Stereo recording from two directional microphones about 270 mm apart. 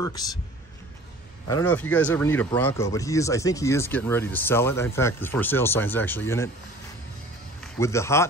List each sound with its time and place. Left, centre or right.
1.5 s speech: centre
7.6 s a man's voice: centre